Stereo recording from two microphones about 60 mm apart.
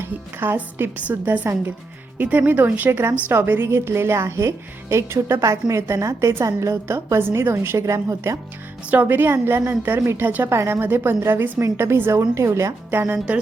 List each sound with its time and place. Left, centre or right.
0.0 s a woman's voice: right
0.5 s a woman's voice: right
7.9 s a woman's voice: right
8.9 s a woman's voice: right
12.3 s a woman's voice: right
12.9 s speech: right